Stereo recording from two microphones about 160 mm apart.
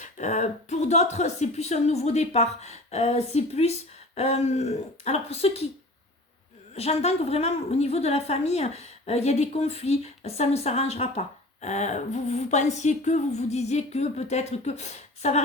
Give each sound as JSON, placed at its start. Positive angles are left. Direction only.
{"t": 0.0, "sound": "a woman's voice", "side_deg": 45}
{"t": 6.7, "sound": "a woman's voice", "side_deg": 40}